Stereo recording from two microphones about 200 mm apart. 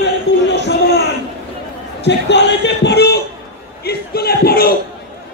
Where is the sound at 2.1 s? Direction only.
60° left (ahead or behind).